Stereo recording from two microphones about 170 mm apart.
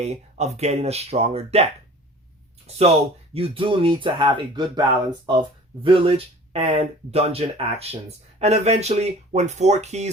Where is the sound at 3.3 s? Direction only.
30° right (ahead or behind).